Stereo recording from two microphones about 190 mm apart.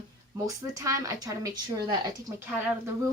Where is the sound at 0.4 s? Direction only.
15° right (ahead or behind).